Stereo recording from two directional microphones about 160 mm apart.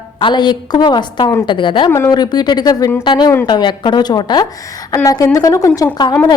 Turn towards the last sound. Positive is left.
turn(degrees=25)  # may be behind; listen again after turning